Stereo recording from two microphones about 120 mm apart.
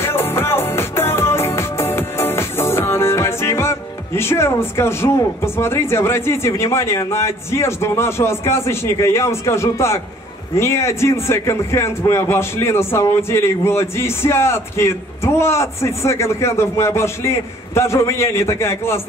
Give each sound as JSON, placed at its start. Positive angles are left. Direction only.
{"t": 0.0, "sound": "music", "side_deg": 20}
{"t": 10.6, "sound": "a man's voice", "side_deg": 20}